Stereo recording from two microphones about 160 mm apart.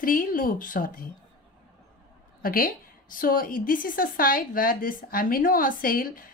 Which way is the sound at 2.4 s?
65° left (ahead or behind).